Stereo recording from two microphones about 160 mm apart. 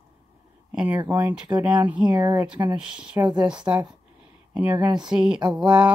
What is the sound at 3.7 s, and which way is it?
Speech, 25° right (ahead or behind).